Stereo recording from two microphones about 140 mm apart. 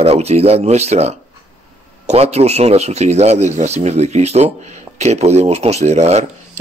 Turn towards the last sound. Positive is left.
turn(degrees=-50)  # may be behind; listen again after turning